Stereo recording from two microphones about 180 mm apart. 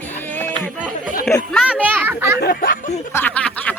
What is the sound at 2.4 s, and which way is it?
Speech, 55° left (ahead or behind).